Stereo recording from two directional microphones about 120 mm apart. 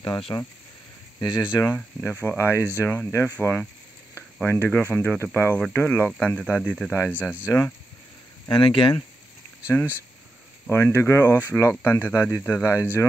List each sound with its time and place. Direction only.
0.3 s speech: 35° left (ahead or behind)
1.7 s speech: 10° left (ahead or behind)
2.0 s speech: 20° left (ahead or behind)
8.5 s speech: 45° left (ahead or behind)
10.7 s speech: 20° left (ahead or behind)